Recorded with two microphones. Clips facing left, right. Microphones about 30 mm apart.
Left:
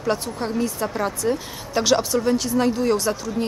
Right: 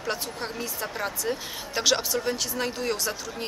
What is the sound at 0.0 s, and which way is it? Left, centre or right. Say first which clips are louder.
Speech: left 7 dB; centre.